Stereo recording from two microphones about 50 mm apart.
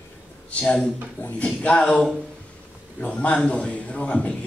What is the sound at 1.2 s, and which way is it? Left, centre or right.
Speech, left.